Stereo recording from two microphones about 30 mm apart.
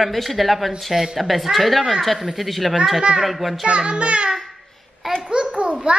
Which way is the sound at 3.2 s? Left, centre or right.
Centre.